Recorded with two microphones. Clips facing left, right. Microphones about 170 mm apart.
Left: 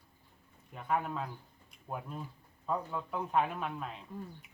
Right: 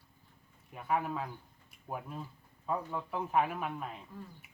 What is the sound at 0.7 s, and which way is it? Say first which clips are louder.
Speech: right 1 dB; 5° right (ahead or behind).